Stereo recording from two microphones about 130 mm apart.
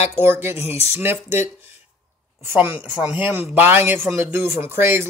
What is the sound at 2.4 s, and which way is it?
Speech, 20° right (ahead or behind).